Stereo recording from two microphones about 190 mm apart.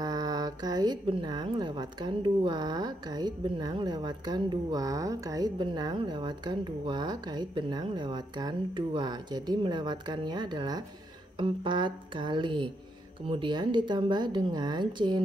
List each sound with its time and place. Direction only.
0.0 s speech: 20° right (ahead or behind)